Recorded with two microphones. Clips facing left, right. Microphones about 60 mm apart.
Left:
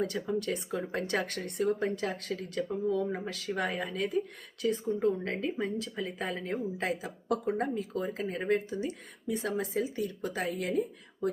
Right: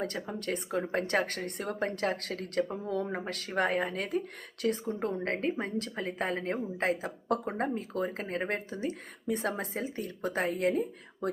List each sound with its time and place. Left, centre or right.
0.3 s speech: right
4.6 s speech: right
4.9 s speech: right